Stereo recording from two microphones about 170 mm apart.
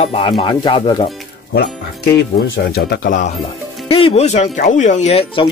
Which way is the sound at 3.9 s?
35° left (ahead or behind).